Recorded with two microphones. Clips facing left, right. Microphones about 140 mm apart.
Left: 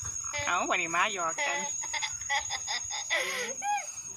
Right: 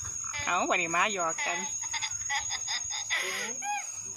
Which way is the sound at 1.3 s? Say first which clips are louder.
Left 2 dB; 90° left.